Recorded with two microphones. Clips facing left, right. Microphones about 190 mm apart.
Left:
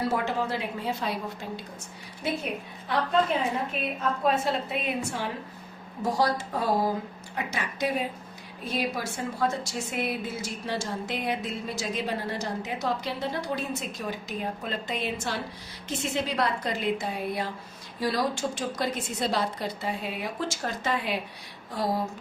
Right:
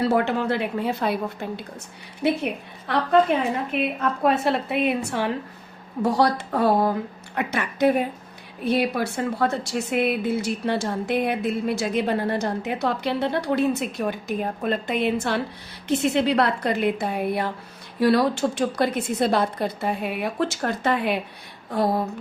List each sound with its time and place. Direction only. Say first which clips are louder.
0.0 s a woman's voice: right 6 dB; 65° right (ahead or behind)